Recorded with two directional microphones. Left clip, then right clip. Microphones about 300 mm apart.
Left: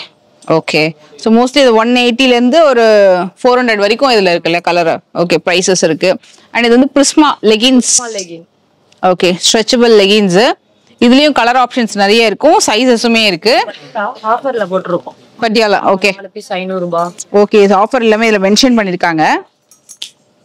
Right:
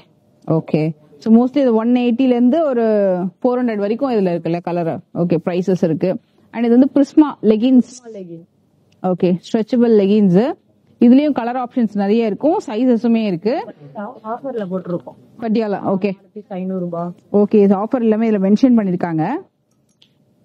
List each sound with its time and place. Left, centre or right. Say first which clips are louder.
0.7 s a woman's voice: left 8 dB; centre
14.9 s speech: left 9 dB; centre
15.4 s a woman's voice: left 10 dB; centre